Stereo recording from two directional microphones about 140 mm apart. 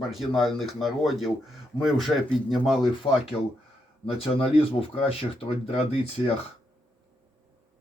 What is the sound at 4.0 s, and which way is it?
Speech, 40° left (ahead or behind).